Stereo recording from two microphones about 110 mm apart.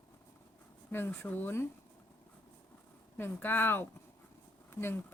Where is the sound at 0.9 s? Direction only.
25° left (ahead or behind).